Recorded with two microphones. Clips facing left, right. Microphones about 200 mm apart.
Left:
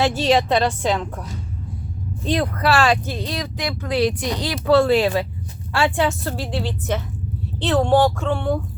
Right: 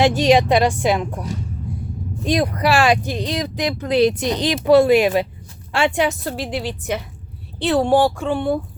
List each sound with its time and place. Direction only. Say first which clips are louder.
0.0 s speech: right 3 dB; 15° right (ahead or behind)